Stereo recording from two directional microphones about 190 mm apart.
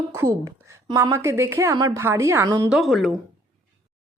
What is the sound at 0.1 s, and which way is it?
Speech, 15° right (ahead or behind).